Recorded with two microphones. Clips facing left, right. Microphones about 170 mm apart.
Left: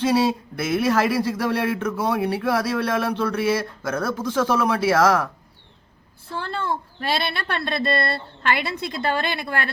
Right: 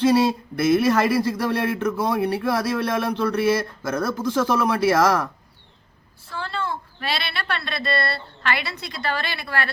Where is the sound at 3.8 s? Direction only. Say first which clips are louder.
Right 1 dB; 5° right (ahead or behind).